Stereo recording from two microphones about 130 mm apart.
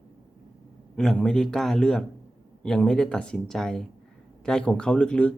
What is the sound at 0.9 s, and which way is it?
A man's voice, 5° left (ahead or behind).